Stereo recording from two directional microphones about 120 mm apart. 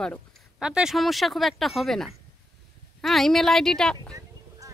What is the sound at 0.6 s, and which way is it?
Speech, 5° right (ahead or behind).